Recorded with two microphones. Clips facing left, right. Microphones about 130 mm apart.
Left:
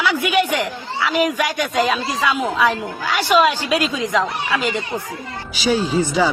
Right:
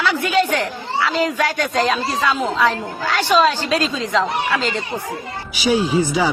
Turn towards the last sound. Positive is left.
turn(degrees=-10)  # may be behind; listen again after turning